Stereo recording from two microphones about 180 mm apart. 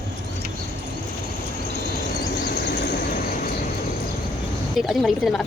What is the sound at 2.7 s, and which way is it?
Vehicle, 70° left (ahead or behind).